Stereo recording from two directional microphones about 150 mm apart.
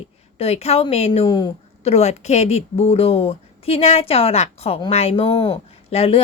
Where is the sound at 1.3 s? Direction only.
30° left (ahead or behind).